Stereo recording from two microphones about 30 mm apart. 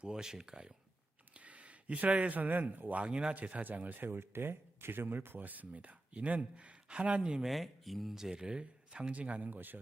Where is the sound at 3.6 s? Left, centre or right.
Right.